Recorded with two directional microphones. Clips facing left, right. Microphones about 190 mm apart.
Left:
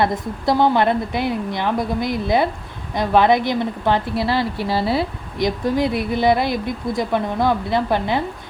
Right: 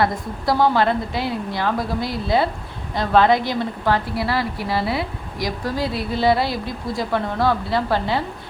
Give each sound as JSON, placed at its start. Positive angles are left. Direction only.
{"t": 0.0, "sound": "a woman's voice", "side_deg": 20}